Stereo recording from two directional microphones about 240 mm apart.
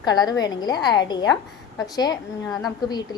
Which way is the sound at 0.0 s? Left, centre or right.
Centre.